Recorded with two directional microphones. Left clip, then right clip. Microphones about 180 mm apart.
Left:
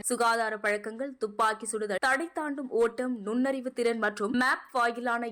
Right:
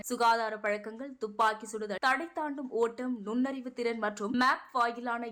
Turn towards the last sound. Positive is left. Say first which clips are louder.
# left 3 dB
turn(degrees=15)  # may be behind; listen again after turning